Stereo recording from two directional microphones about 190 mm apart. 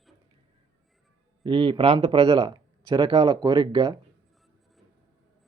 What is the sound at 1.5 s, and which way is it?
Speech, 25° right (ahead or behind).